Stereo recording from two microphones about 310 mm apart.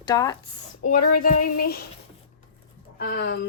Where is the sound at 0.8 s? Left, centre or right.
Left.